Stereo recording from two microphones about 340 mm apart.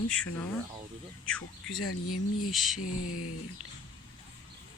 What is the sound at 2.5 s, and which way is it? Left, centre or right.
Speech, centre.